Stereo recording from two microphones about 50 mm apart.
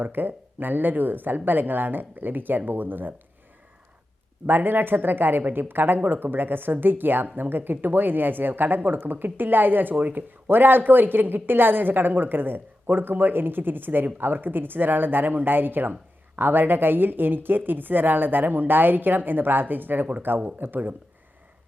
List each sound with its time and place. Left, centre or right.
0.0 s speech: right
4.4 s speech: right